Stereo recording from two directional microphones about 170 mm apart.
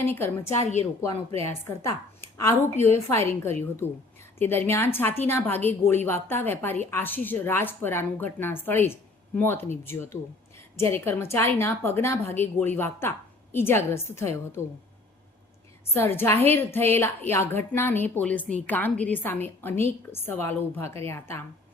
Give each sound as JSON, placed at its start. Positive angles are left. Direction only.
{"t": 0.0, "sound": "a woman's voice", "side_deg": 15}
{"t": 2.4, "sound": "a woman's voice", "side_deg": 20}
{"t": 15.9, "sound": "a woman's voice", "side_deg": 15}